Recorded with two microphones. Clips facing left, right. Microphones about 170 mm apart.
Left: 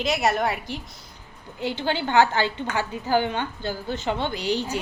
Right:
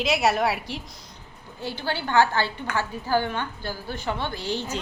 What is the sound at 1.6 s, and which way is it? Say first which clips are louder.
A woman's voice: left 4 dB; 20° left (ahead or behind).